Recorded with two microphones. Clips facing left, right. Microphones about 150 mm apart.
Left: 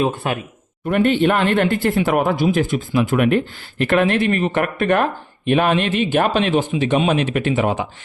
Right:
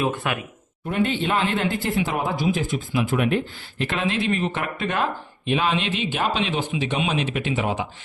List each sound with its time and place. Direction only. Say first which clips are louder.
0.0 s speech: left 4 dB; 30° left (ahead or behind)
0.9 s a man's voice: left 7 dB; 65° left (ahead or behind)